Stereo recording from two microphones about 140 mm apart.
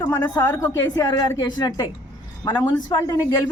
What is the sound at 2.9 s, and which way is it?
Speech, 30° left (ahead or behind).